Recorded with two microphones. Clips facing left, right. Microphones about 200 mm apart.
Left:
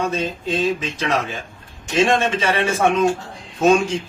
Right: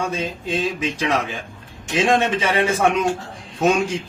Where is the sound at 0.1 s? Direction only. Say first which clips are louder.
Left 2 dB; 15° right (ahead or behind).